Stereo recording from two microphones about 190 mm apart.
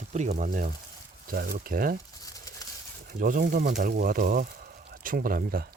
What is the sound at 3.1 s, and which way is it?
Speech, 45° right (ahead or behind).